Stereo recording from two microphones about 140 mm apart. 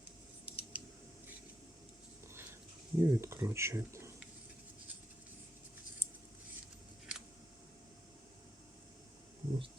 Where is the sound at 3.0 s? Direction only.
20° right (ahead or behind).